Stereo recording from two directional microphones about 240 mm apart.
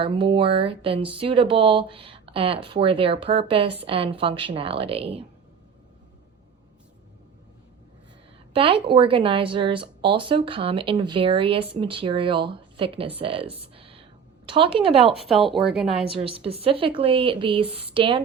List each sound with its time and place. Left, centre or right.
0.0 s speech: right
8.5 s speech: right
15.1 s speech: centre
16.0 s speech: right